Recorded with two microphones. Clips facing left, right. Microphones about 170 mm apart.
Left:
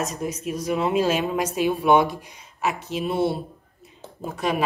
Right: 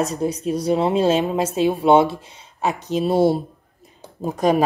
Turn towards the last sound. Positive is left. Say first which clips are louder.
# right 7 dB
turn(degrees=-40)  # may be behind; listen again after turning